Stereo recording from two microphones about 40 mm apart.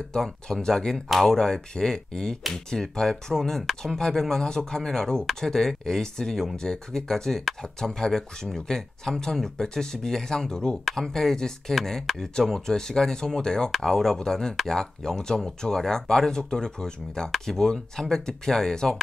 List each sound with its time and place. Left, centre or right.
0.1 s speech: centre
10.9 s speech: centre